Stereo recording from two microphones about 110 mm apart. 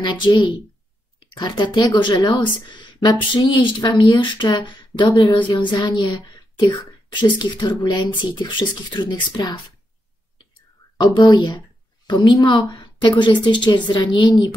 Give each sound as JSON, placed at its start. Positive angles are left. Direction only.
{"t": 0.0, "sound": "a woman's voice", "side_deg": 45}
{"t": 11.0, "sound": "a woman's voice", "side_deg": 40}